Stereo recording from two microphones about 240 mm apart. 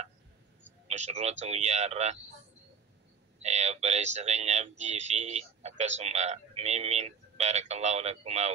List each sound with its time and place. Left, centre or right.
0.8 s speech: right
3.4 s speech: right